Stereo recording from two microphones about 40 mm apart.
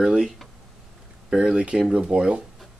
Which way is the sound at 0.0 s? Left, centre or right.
Centre.